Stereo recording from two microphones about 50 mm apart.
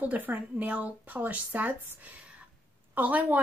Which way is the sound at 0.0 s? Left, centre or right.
Right.